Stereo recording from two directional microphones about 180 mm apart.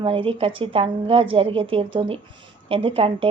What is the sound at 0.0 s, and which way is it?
A woman's voice, 30° right (ahead or behind).